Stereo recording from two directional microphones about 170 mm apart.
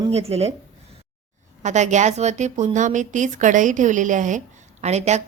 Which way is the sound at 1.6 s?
45° right (ahead or behind).